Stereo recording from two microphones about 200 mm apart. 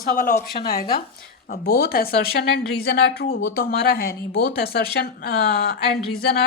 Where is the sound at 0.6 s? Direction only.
35° left (ahead or behind).